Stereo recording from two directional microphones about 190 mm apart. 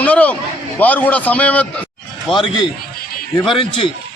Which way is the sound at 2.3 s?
25° left (ahead or behind).